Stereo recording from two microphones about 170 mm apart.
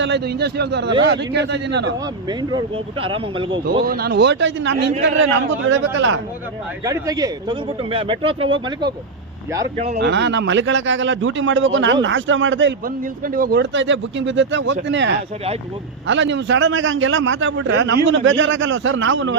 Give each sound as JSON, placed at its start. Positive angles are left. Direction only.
{"t": 0.0, "sound": "speech", "side_deg": -80}
{"t": 1.0, "sound": "a man's voice", "side_deg": -90}
{"t": 2.5, "sound": "speech", "side_deg": -30}
{"t": 3.8, "sound": "a man's voice", "side_deg": -65}
{"t": 6.8, "sound": "speech", "side_deg": -20}
{"t": 9.7, "sound": "speech", "side_deg": -40}
{"t": 10.0, "sound": "a man's voice", "side_deg": -90}
{"t": 13.2, "sound": "speech", "side_deg": -55}
{"t": 13.6, "sound": "a man's voice", "side_deg": -90}